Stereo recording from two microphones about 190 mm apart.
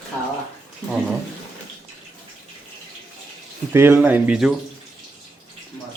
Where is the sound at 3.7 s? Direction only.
10° right (ahead or behind).